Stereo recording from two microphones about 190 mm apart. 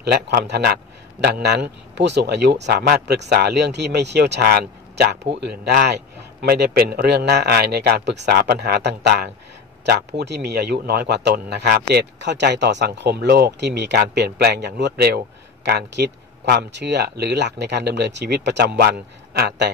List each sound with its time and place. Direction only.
0.0 s speech: 60° right (ahead or behind)